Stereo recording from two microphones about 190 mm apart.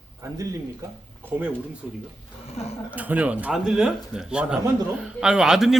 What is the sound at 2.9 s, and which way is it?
Speech, 10° right (ahead or behind).